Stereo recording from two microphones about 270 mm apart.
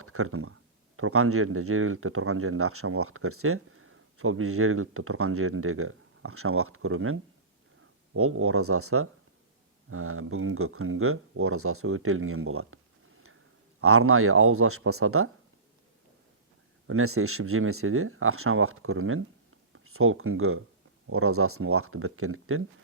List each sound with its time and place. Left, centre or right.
0.0 s speech: right
16.8 s speech: right